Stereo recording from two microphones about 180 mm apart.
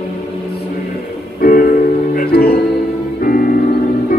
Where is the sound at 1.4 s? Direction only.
60° left (ahead or behind).